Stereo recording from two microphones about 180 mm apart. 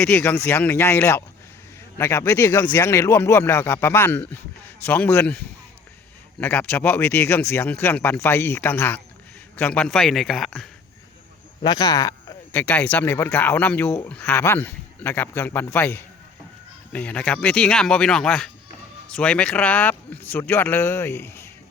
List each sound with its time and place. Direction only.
0.0 s speech: 10° left (ahead or behind)
6.4 s speech: 10° left (ahead or behind)
11.6 s speech: 25° left (ahead or behind)
12.5 s speech: 10° left (ahead or behind)